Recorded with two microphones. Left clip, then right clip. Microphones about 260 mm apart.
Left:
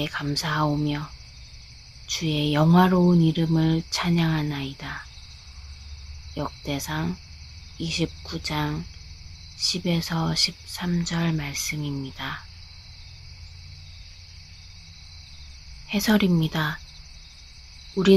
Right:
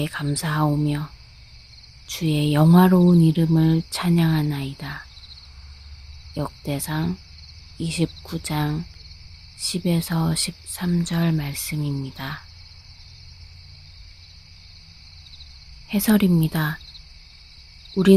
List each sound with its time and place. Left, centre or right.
0.0 s speech: right
6.3 s speech: right
15.9 s speech: right